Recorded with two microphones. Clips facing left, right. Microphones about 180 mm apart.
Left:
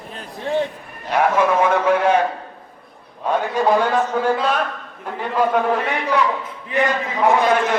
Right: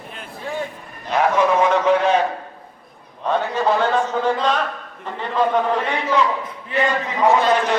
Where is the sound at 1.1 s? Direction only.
10° left (ahead or behind).